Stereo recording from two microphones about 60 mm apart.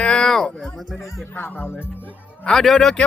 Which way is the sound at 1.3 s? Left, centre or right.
Left.